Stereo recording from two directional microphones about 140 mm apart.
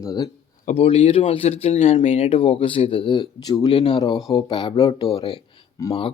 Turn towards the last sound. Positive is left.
turn(degrees=40)  # may be behind; listen again after turning